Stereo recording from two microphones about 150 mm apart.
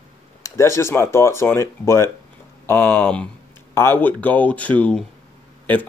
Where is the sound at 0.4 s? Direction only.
20° left (ahead or behind).